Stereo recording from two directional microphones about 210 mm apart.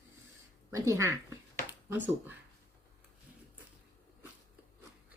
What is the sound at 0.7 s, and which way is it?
Speech, 15° right (ahead or behind).